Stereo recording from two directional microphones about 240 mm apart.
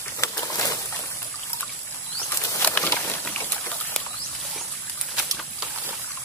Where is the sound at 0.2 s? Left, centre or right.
Centre.